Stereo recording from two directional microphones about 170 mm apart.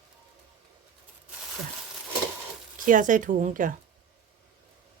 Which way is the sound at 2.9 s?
50° right (ahead or behind).